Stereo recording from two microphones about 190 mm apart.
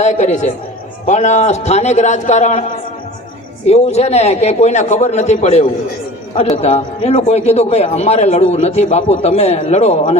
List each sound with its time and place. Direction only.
0.0 s a man's voice: 35° left (ahead or behind)
3.7 s a man's voice: 35° left (ahead or behind)